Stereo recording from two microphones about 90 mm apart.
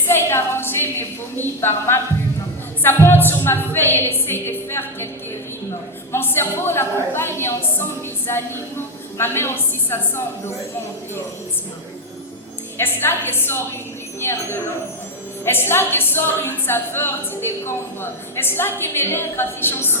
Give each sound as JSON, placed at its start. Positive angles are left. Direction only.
{"t": 0.1, "sound": "a woman's voice", "side_deg": 25}
{"t": 6.1, "sound": "a woman's voice", "side_deg": 25}
{"t": 12.7, "sound": "a woman's voice", "side_deg": 25}